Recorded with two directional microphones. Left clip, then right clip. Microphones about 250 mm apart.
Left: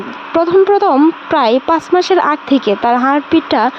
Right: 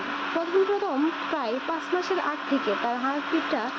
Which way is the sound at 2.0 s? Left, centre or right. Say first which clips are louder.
Left 15 dB; left.